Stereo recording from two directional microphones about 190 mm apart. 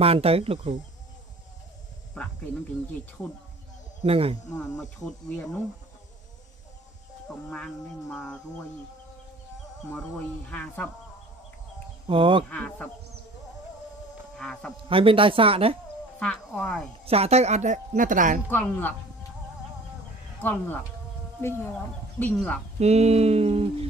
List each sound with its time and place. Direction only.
0.0 s a woman's voice: 30° right (ahead or behind)
4.0 s a woman's voice: 30° right (ahead or behind)
4.6 s a sound: 5° left (ahead or behind)
7.4 s a sound: 5° left (ahead or behind)
10.1 s a sound: 5° left (ahead or behind)
12.1 s speech: 25° right (ahead or behind)
12.4 s speech: 5° left (ahead or behind)
14.3 s speech: 5° left (ahead or behind)
14.9 s speech: 30° right (ahead or behind)
16.2 s a sound: 5° left (ahead or behind)
17.0 s a woman's voice: 30° right (ahead or behind)
18.5 s speech: 10° left (ahead or behind)
20.4 s speech: 10° left (ahead or behind)
22.8 s a woman's voice: 35° right (ahead or behind)